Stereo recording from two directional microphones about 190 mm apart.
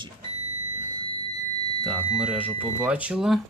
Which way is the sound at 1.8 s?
Centre (ahead or behind).